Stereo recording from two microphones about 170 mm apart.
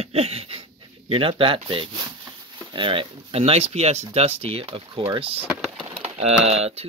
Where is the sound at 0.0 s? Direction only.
35° right (ahead or behind).